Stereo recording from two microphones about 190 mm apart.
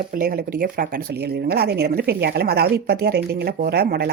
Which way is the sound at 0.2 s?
50° right (ahead or behind).